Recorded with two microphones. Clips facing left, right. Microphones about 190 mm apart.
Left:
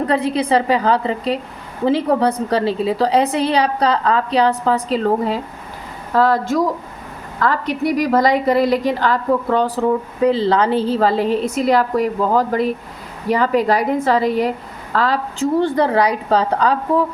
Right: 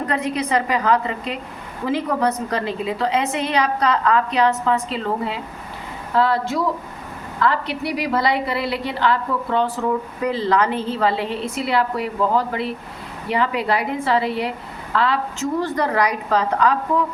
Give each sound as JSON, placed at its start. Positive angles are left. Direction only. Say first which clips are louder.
{"t": 0.1, "sound": "a woman's voice", "louder": "left 4 dB", "side_deg": 30}